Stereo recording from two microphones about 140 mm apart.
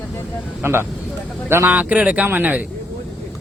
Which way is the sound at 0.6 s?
15° right (ahead or behind).